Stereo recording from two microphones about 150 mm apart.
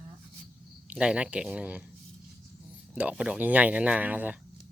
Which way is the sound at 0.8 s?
5° right (ahead or behind).